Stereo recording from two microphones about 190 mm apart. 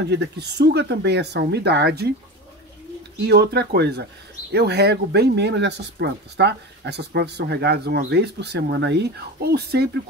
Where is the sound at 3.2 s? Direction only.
60° right (ahead or behind).